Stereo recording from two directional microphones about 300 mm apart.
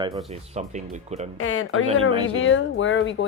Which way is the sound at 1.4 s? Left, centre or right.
Left.